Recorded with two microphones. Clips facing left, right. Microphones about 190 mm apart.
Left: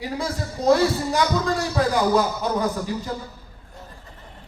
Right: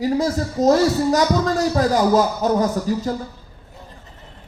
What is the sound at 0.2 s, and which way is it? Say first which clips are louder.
Speech: right 8 dB; 45° right (ahead or behind).